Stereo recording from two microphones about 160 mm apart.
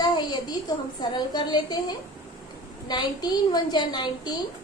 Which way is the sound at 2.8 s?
25° left (ahead or behind).